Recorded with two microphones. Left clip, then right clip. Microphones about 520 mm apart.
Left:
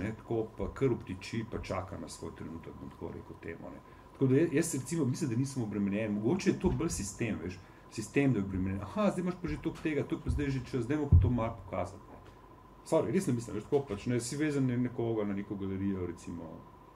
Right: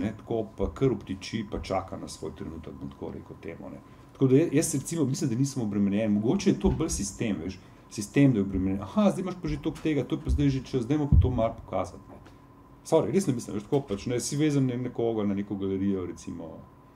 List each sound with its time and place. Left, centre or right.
0.6 s speech: left
4.2 s speech: left
12.9 s speech: left